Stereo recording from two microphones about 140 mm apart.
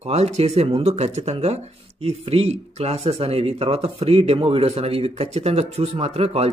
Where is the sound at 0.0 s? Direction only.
50° right (ahead or behind).